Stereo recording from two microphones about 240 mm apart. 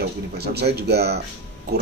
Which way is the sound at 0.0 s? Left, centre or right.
Right.